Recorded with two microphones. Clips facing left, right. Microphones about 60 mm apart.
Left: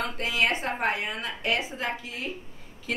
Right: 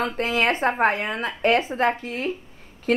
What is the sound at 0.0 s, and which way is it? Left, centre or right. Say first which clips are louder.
A woman's voice: right 5 dB; right.